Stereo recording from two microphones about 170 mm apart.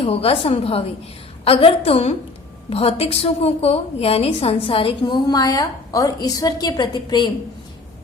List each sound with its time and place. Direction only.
0.0 s a woman's voice: 35° left (ahead or behind)